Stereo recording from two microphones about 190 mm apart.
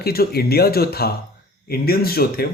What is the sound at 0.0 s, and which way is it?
Speech, 55° left (ahead or behind).